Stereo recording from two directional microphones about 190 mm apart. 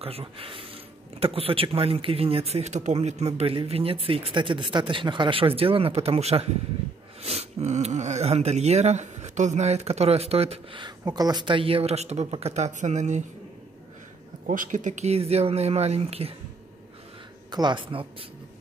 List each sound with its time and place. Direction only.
0.0 s a man's voice: 30° right (ahead or behind)
14.4 s speech: 45° right (ahead or behind)
17.5 s a man's voice: 25° right (ahead or behind)